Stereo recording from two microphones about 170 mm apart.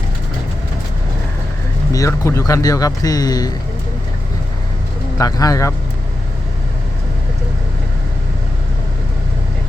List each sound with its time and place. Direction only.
1.9 s speech: 20° left (ahead or behind)
5.1 s speech: 20° left (ahead or behind)